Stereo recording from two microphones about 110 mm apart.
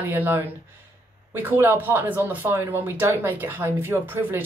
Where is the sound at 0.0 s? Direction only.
15° right (ahead or behind).